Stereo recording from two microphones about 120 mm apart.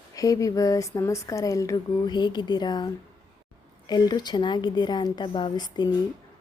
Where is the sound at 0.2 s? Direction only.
30° left (ahead or behind).